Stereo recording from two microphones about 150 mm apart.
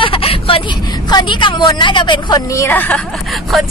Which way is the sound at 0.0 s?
35° left (ahead or behind).